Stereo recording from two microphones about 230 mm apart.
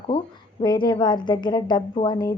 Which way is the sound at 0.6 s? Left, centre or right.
Centre.